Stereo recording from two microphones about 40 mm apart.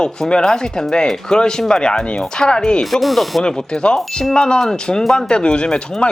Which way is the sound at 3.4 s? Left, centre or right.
Centre.